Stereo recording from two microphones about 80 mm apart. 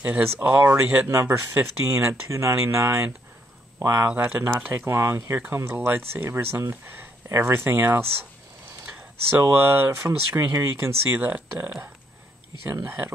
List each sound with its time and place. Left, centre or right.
0.0 s speech: right
4.1 s speech: centre
8.8 s a sound: right
9.5 s speech: right
11.1 s speech: right